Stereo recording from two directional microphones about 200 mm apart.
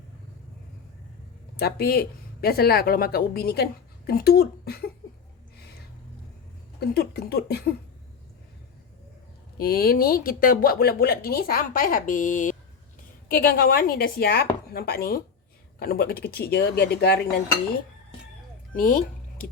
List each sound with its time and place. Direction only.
1.5 s speech: 50° left (ahead or behind)
6.7 s speech: 55° left (ahead or behind)
9.6 s speech: 50° left (ahead or behind)
18.7 s speech: 45° left (ahead or behind)